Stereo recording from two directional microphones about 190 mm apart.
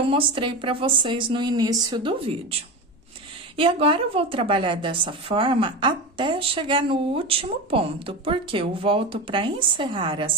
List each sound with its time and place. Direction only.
0.1 s a woman's voice: 25° right (ahead or behind)
3.5 s a woman's voice: 25° right (ahead or behind)